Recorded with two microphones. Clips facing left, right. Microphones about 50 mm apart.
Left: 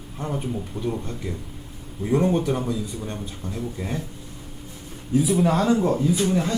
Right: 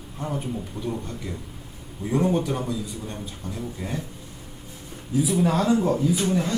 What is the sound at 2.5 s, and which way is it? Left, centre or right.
Speech, centre.